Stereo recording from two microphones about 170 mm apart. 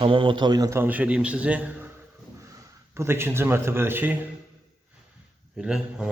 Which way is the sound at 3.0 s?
15° right (ahead or behind).